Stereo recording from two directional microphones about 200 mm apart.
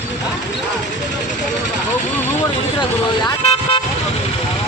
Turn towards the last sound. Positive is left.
turn(degrees=30)  # may be behind; listen again after turning